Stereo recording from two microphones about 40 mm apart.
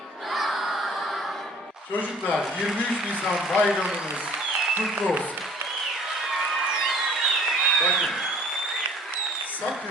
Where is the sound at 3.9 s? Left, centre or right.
Centre.